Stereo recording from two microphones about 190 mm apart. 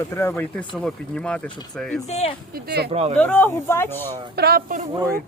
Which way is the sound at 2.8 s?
30° right (ahead or behind).